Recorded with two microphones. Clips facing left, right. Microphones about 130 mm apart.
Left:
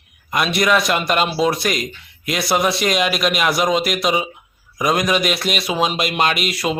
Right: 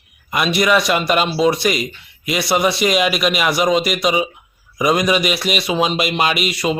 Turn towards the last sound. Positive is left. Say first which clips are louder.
# right 2 dB
turn(degrees=0)  # may be behind; listen again after turning